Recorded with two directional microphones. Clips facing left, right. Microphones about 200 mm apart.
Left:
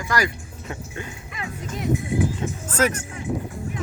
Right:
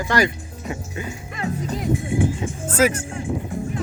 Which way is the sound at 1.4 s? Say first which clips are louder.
Right 7 dB; 35° right (ahead or behind).